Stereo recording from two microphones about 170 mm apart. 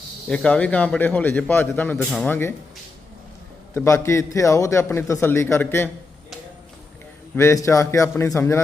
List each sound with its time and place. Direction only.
0.3 s a man's voice: 5° left (ahead or behind)
3.8 s a man's voice: 15° left (ahead or behind)
7.3 s a man's voice: 15° left (ahead or behind)